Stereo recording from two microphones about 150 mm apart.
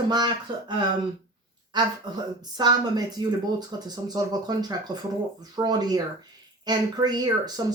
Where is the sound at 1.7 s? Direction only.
30° right (ahead or behind).